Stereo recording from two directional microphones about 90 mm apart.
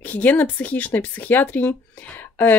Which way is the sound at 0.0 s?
20° left (ahead or behind).